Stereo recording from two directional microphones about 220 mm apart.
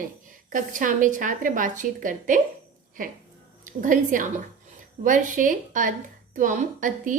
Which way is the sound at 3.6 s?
35° right (ahead or behind).